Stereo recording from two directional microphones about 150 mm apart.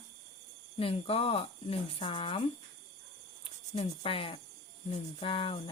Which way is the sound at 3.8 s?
40° left (ahead or behind).